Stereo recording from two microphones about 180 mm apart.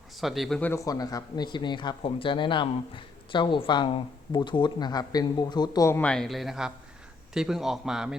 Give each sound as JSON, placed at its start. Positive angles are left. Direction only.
{"t": 0.2, "sound": "a man's voice", "side_deg": 0}
{"t": 0.7, "sound": "a man's voice", "side_deg": 20}